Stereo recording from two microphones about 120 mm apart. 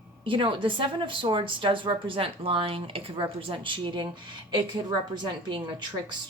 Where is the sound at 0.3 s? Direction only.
45° right (ahead or behind).